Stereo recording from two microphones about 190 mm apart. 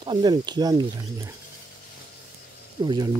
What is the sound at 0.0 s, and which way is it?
Speech, 25° right (ahead or behind).